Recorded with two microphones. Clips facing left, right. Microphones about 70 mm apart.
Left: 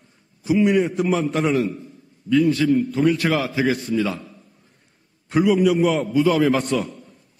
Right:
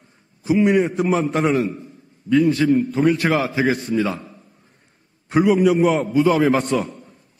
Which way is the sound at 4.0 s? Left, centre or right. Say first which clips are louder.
Right 1 dB; right.